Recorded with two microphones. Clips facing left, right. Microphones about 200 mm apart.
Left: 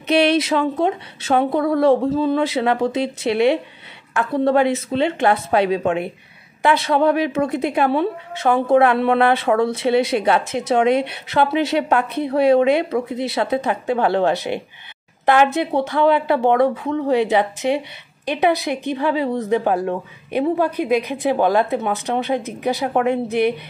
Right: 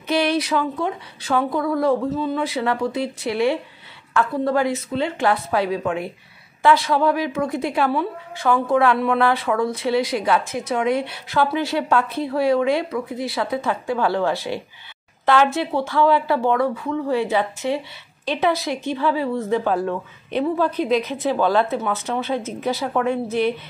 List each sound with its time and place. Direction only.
0.2 s a woman's voice: 25° left (ahead or behind)